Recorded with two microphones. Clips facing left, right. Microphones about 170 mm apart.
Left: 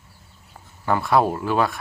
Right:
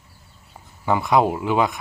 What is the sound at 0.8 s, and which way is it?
Speech, 15° right (ahead or behind).